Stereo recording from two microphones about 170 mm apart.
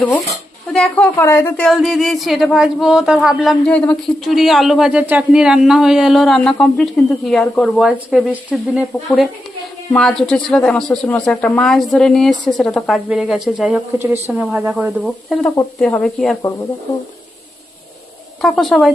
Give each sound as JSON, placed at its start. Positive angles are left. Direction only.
{"t": 0.0, "sound": "a woman's voice", "side_deg": 10}
{"t": 9.9, "sound": "a woman's voice", "side_deg": 0}
{"t": 16.4, "sound": "speech", "side_deg": 20}
{"t": 18.4, "sound": "a woman's voice", "side_deg": 0}